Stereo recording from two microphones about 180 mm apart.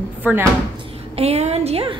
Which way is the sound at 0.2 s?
10° right (ahead or behind).